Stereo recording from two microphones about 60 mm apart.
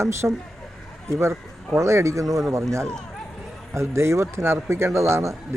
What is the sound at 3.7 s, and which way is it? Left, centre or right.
A man's voice, right.